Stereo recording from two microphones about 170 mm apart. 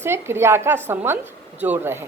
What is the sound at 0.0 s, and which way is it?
A woman's voice, 15° right (ahead or behind).